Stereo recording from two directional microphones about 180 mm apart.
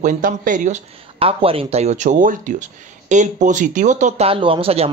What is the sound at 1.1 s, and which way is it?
Speech, 30° right (ahead or behind).